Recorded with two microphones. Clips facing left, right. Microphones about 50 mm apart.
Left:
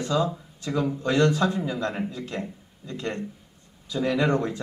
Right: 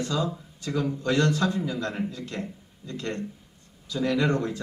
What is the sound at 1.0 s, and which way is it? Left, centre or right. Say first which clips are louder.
Speech: left 2 dB; left.